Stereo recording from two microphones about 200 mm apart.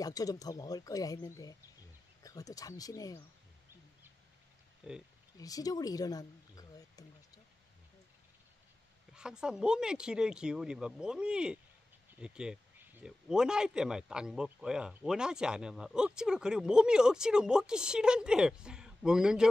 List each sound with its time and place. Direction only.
0.0 s speech: 20° left (ahead or behind)
4.8 s a man's voice: 5° right (ahead or behind)
5.4 s speech: 20° left (ahead or behind)
9.1 s a man's voice: 5° right (ahead or behind)